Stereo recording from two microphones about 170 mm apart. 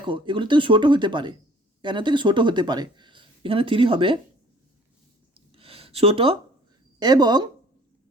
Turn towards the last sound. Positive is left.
turn(degrees=-25)  # may be behind; listen again after turning